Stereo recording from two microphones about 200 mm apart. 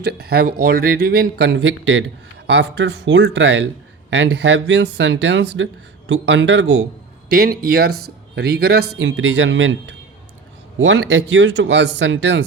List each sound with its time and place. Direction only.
0.0 s a man's voice: 50° right (ahead or behind)
7.3 s a man's voice: 50° right (ahead or behind)
9.0 s speech: 70° right (ahead or behind)